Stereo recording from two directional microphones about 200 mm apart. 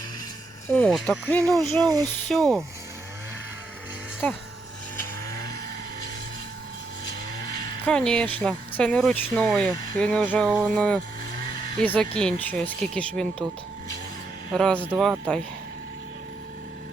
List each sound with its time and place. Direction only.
0.7 s speech: 5° left (ahead or behind)
1.9 s speech: 20° right (ahead or behind)
2.2 s speech: centre (ahead or behind)
4.2 s speech: 5° left (ahead or behind)
7.9 s speech: 5° left (ahead or behind)
14.5 s speech: 5° left (ahead or behind)
14.8 s speech: 5° right (ahead or behind)